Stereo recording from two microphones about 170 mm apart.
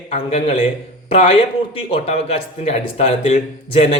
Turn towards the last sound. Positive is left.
turn(degrees=35)  # may be behind; listen again after turning